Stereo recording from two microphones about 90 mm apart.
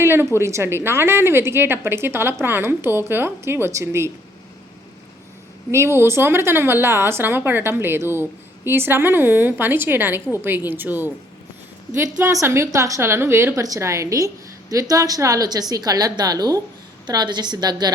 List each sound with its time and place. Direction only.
0.0 s a woman's voice: 25° right (ahead or behind)
5.7 s a woman's voice: 30° right (ahead or behind)
12.2 s a woman's voice: 30° right (ahead or behind); by 17.9 s 50° right (ahead or behind)